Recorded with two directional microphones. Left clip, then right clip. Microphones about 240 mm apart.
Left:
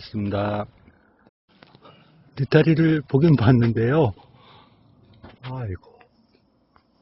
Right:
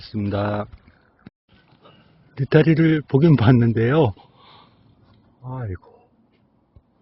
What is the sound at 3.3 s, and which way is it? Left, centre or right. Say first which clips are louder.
Speech: right 2 dB; centre.